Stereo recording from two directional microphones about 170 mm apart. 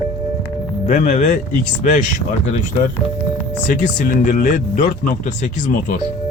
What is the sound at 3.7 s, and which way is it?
Speech, 50° left (ahead or behind).